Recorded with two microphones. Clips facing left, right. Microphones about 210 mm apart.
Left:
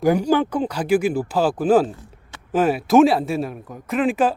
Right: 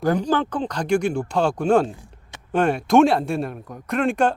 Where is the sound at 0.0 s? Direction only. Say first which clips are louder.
Left 3 dB; 10° left (ahead or behind).